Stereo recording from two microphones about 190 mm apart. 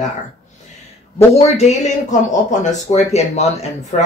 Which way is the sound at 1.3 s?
35° left (ahead or behind).